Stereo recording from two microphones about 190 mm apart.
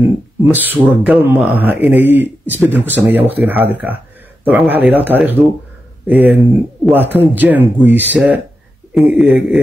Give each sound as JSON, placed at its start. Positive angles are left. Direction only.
{"t": 0.0, "sound": "speech", "side_deg": -10}